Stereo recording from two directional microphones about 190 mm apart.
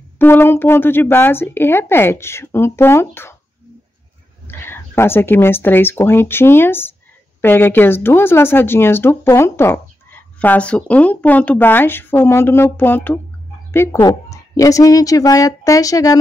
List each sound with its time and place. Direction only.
0.2 s speech: 10° left (ahead or behind)
4.5 s speech: 10° left (ahead or behind)